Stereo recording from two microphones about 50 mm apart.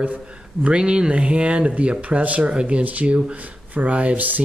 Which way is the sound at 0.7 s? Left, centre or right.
Right.